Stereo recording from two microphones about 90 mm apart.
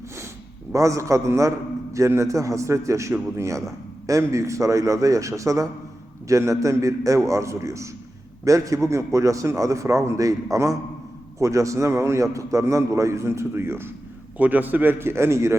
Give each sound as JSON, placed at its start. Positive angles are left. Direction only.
{"t": 0.7, "sound": "a man's voice", "side_deg": -35}